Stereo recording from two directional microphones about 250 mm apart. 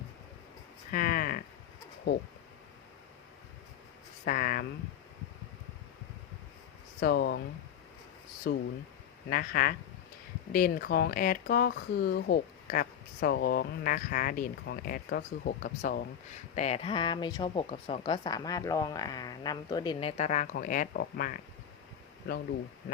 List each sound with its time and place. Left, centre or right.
0.9 s a sound: left
4.3 s speech: left
7.0 s speech: left
8.4 s speech: left